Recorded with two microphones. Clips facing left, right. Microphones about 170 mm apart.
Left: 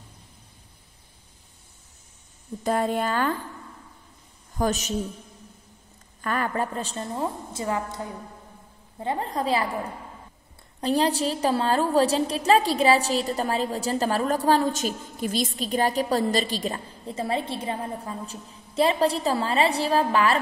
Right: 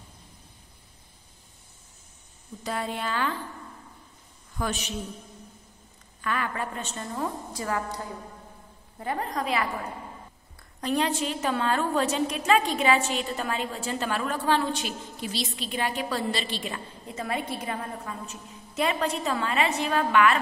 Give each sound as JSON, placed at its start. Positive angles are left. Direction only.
{"t": 2.6, "sound": "speech", "side_deg": 45}
{"t": 4.6, "sound": "a woman's voice", "side_deg": 40}
{"t": 6.2, "sound": "a woman's voice", "side_deg": 40}
{"t": 10.8, "sound": "a woman's voice", "side_deg": 35}